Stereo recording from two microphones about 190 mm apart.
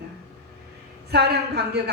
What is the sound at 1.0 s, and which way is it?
Speech, 60° right (ahead or behind).